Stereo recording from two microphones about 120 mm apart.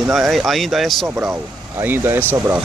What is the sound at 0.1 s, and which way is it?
Speech, centre (ahead or behind).